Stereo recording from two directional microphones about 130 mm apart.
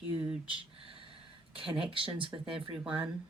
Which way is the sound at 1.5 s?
40° right (ahead or behind).